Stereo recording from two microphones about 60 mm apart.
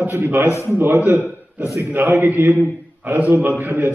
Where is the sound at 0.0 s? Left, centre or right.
Right.